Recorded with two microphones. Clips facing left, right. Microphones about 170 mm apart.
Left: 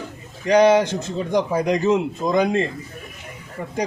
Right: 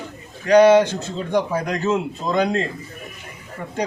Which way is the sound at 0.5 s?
10° left (ahead or behind).